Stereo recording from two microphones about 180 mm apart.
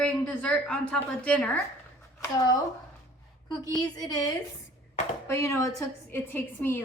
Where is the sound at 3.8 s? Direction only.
20° left (ahead or behind).